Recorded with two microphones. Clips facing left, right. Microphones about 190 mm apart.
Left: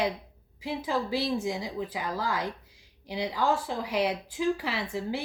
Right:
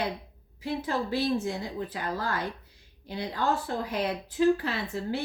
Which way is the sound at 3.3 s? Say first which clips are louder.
Left 1 dB; 10° left (ahead or behind).